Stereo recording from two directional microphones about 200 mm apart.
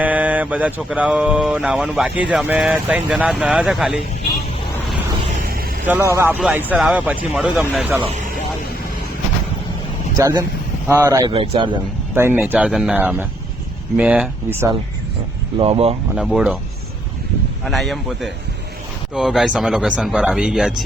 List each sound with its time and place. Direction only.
0.0 s mantra: 5° right (ahead or behind)
5.4 s vehicle: 45° right (ahead or behind)
5.8 s speech: 10° right (ahead or behind)
10.2 s speech: 15° right (ahead or behind)
11.3 s speech: 25° right (ahead or behind)
12.1 s mantra: 10° right (ahead or behind)
13.9 s speech: 5° right (ahead or behind)
15.5 s speech: 30° right (ahead or behind)
16.1 s mantra: centre (ahead or behind)
17.7 s mantra: centre (ahead or behind)